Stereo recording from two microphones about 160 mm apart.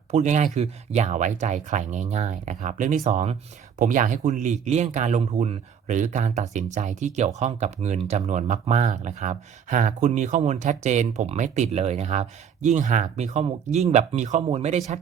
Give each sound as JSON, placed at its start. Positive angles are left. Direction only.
{"t": 0.1, "sound": "speech", "side_deg": -50}